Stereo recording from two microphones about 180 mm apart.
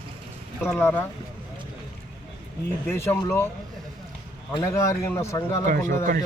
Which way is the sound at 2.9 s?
15° left (ahead or behind).